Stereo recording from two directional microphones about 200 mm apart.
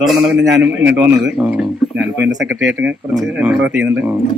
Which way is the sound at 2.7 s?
5° right (ahead or behind).